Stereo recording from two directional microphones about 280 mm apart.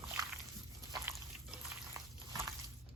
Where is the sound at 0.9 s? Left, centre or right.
Centre.